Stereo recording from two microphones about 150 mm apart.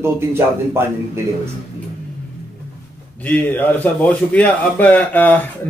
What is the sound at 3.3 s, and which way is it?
A man's voice, 10° left (ahead or behind).